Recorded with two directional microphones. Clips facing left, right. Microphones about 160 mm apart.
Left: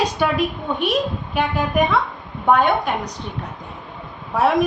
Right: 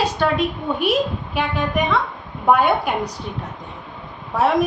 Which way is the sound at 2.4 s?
5° right (ahead or behind).